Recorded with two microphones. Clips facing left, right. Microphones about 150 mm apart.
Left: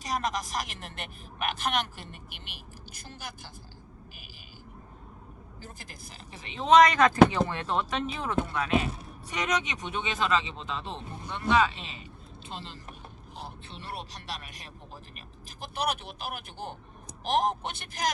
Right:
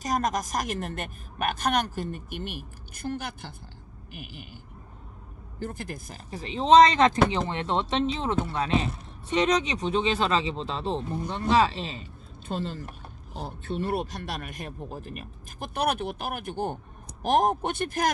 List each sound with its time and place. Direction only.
0.0 s a woman's voice: 45° right (ahead or behind); by 3.5 s 60° right (ahead or behind)
4.1 s fire alarm: 60° right (ahead or behind)
5.5 s speech: 60° right (ahead or behind); by 12.0 s 35° right (ahead or behind)
12.5 s a woman's voice: 45° right (ahead or behind)